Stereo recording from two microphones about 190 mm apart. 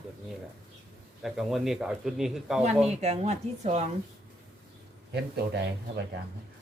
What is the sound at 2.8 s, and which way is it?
Speech, 35° right (ahead or behind).